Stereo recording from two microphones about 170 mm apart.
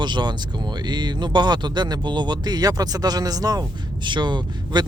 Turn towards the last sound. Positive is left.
turn(degrees=-25)  # may be behind; listen again after turning